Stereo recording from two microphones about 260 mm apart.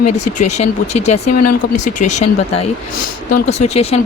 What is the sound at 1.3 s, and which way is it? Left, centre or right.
Speech, left.